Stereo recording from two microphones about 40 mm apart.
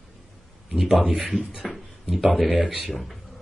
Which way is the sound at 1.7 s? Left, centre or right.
Centre.